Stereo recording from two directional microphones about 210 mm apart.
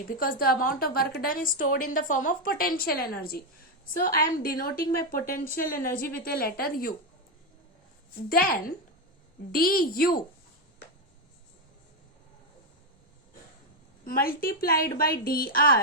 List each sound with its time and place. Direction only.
0.2 s a woman's voice: 45° left (ahead or behind)
8.3 s a woman's voice: 45° left (ahead or behind)
14.0 s a woman's voice: 45° left (ahead or behind)